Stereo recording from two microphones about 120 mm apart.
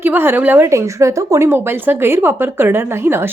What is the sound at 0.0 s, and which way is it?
A woman's voice, 15° right (ahead or behind).